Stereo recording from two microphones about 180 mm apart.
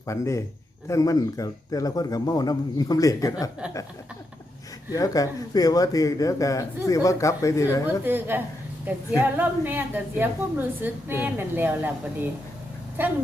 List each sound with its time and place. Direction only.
0.0 s speech: 15° left (ahead or behind)
4.9 s speech: 20° left (ahead or behind)
7.9 s a woman's voice: 10° right (ahead or behind)